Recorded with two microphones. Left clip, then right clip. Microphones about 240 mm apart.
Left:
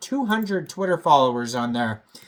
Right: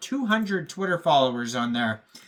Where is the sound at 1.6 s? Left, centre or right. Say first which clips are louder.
Right 2 dB; left.